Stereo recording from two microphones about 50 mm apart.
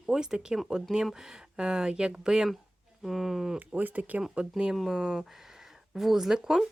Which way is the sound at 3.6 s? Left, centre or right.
Right.